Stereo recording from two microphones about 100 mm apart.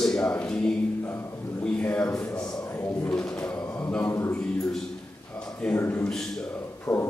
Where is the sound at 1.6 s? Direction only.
15° left (ahead or behind).